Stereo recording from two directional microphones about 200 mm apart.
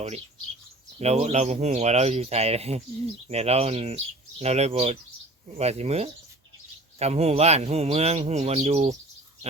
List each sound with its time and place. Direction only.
0.9 s speech: 30° right (ahead or behind)